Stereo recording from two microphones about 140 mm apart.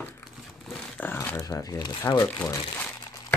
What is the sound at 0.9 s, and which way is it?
Speech, 15° left (ahead or behind).